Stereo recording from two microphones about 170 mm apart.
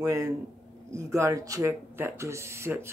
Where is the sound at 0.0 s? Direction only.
15° right (ahead or behind).